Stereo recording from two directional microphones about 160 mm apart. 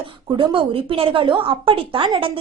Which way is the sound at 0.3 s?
35° right (ahead or behind).